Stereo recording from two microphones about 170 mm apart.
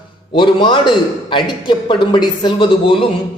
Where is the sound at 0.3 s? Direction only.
30° left (ahead or behind).